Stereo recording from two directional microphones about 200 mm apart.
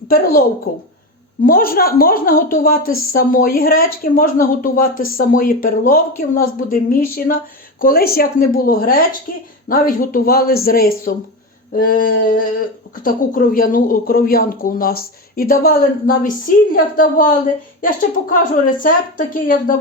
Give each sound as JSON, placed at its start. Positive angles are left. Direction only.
{"t": 0.1, "sound": "speech", "side_deg": 45}
{"t": 1.5, "sound": "speech", "side_deg": 45}